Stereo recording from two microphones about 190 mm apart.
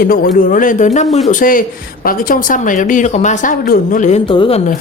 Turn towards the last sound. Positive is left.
turn(degrees=30)  # may be behind; listen again after turning